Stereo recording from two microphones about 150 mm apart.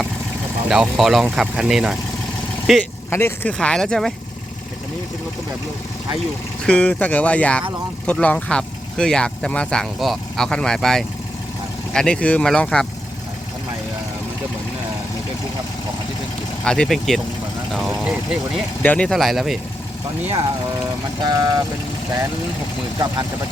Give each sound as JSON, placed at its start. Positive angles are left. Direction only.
{"t": 0.7, "sound": "speech", "side_deg": -5}
{"t": 3.1, "sound": "speech", "side_deg": 15}
{"t": 6.7, "sound": "speech", "side_deg": 10}
{"t": 16.6, "sound": "speech", "side_deg": 5}
{"t": 18.8, "sound": "speech", "side_deg": 10}
{"t": 21.2, "sound": "speech", "side_deg": -25}